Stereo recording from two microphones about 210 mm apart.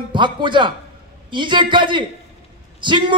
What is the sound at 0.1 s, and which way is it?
A man's voice, 20° right (ahead or behind).